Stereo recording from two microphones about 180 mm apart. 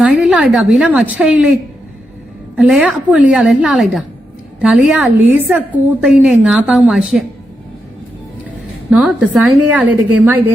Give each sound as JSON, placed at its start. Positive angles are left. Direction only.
{"t": 0.0, "sound": "a woman's voice", "side_deg": -5}
{"t": 2.6, "sound": "a woman's voice", "side_deg": -5}
{"t": 8.9, "sound": "a woman's voice", "side_deg": -5}